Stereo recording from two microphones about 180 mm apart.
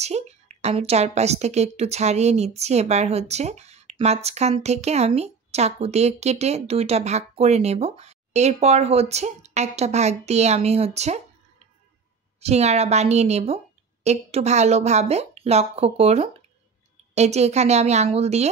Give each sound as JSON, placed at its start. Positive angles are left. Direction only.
{"t": 0.0, "sound": "a woman's voice", "side_deg": -40}
{"t": 12.4, "sound": "a woman's voice", "side_deg": -35}